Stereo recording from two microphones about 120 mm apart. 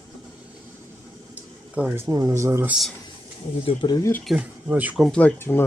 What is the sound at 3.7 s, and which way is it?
Speech, 50° left (ahead or behind).